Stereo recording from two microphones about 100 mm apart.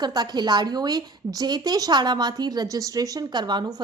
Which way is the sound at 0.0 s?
45° right (ahead or behind).